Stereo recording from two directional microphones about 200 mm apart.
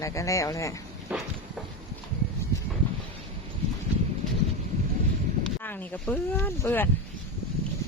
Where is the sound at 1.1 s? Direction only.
5° right (ahead or behind).